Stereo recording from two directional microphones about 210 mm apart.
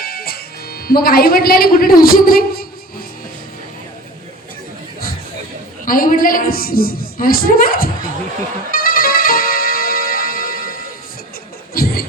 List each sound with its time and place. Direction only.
0.0 s speech: 45° left (ahead or behind)
5.8 s a man's voice: 40° left (ahead or behind)
8.7 s music: 45° left (ahead or behind)
11.7 s vehicle: 45° left (ahead or behind)